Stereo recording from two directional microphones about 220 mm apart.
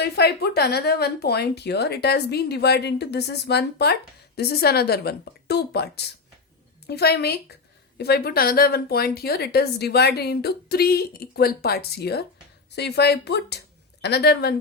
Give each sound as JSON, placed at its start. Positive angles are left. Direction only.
{"t": 0.0, "sound": "a woman's voice", "side_deg": 45}